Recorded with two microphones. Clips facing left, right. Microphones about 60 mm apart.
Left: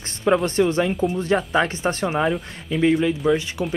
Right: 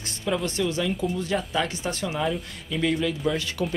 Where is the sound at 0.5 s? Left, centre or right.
Left.